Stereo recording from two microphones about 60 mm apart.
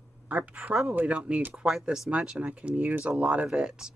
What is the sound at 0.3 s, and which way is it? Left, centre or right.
Speech, right.